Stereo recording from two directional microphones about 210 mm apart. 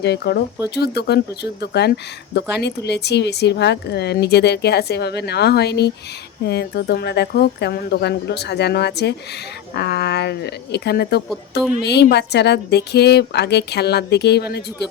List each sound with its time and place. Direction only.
0.0 s speech: 50° left (ahead or behind)